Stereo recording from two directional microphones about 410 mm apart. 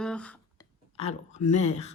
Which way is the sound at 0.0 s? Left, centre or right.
Centre.